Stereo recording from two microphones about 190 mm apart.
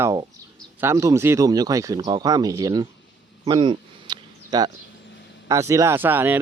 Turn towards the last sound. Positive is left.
turn(degrees=-10)  # may be behind; listen again after turning